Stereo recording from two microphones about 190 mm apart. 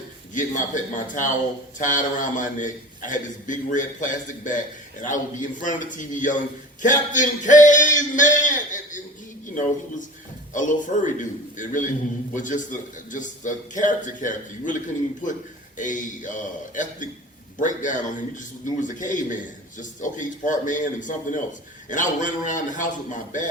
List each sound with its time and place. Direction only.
0.3 s a man's voice: 40° left (ahead or behind)
10.5 s a man's voice: 40° left (ahead or behind)